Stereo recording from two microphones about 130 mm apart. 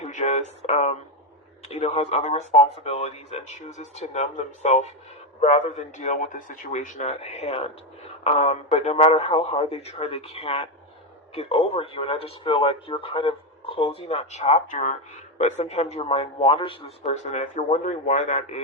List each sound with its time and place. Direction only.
0.0 s speech: 65° left (ahead or behind); by 16.7 s 45° left (ahead or behind)
17.0 s speech: 60° left (ahead or behind)